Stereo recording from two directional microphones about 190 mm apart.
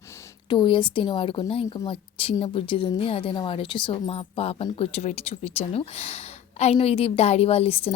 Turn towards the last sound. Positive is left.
turn(degrees=30)  # may be behind; listen again after turning